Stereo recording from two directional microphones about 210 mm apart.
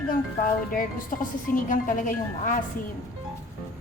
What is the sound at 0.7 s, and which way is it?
Speech, 40° left (ahead or behind).